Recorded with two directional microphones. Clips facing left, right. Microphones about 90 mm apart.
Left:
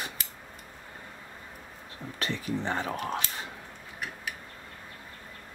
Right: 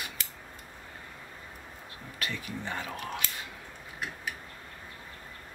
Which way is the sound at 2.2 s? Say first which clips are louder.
Left 5 dB; 30° left (ahead or behind).